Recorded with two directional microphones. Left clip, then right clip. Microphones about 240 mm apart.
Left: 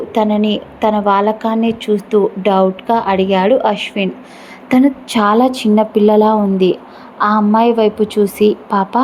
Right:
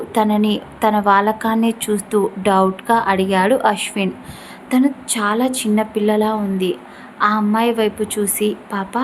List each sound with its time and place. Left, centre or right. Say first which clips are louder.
0.1 s a woman's voice: left 2 dB; centre
4.7 s a woman's voice: left 5 dB; centre